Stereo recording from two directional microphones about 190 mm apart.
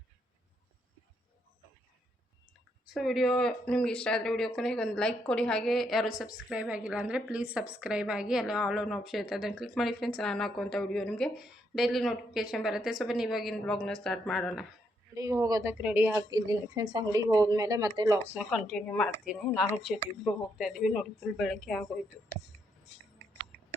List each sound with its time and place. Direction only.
2.9 s a woman's voice: centre (ahead or behind)
15.1 s a woman's voice: 15° right (ahead or behind)
18.3 s a woman's voice: centre (ahead or behind)